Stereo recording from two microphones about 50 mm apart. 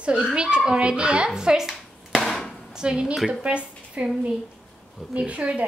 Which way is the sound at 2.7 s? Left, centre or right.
Centre.